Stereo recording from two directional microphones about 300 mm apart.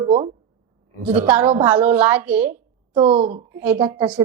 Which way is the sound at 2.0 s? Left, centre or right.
Centre.